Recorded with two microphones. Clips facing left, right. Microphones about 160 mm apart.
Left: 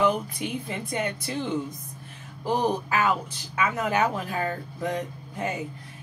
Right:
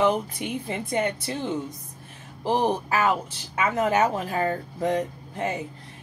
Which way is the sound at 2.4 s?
30° right (ahead or behind).